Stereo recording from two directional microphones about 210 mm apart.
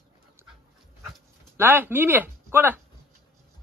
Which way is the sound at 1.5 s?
10° right (ahead or behind).